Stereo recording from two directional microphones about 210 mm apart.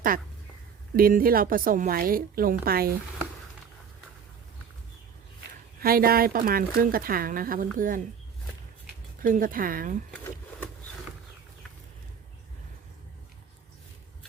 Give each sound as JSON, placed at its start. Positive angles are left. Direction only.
{"t": 0.9, "sound": "a woman's voice", "side_deg": -45}
{"t": 5.8, "sound": "a woman's voice", "side_deg": -45}
{"t": 9.2, "sound": "speech", "side_deg": -40}